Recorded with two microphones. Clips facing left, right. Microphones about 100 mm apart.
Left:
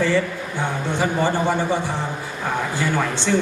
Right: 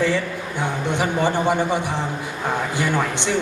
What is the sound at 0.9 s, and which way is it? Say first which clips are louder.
A man's voice: even; 15° right (ahead or behind).